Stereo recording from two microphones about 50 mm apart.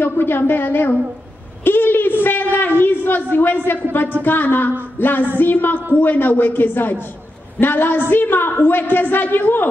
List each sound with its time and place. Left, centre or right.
0.0 s a man's voice: left
4.9 s a sound: left
5.4 s a man's voice: left